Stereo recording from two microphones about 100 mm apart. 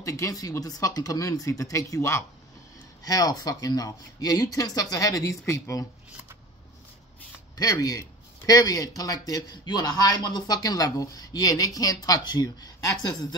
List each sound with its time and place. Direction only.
0.0 s a man's voice: 35° left (ahead or behind)
7.5 s a man's voice: 35° left (ahead or behind)